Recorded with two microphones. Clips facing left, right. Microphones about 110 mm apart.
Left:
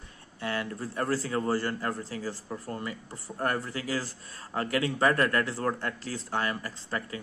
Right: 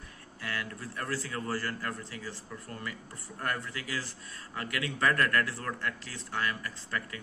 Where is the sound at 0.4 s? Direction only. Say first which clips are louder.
Left 6 dB; 30° left (ahead or behind).